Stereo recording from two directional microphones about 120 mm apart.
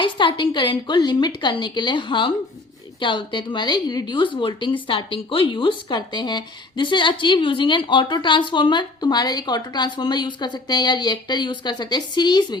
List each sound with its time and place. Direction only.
0.0 s a woman's voice: 40° left (ahead or behind)